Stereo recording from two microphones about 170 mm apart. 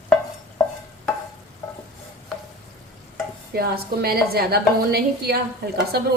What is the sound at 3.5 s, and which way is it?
A woman's voice, 65° right (ahead or behind).